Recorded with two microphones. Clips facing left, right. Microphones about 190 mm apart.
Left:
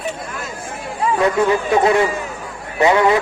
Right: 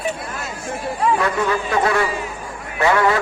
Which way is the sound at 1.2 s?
20° left (ahead or behind).